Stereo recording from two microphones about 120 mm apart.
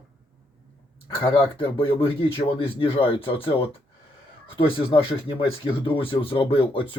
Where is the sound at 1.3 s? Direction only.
45° left (ahead or behind).